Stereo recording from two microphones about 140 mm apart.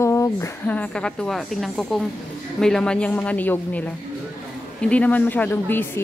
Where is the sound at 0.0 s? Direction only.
20° left (ahead or behind).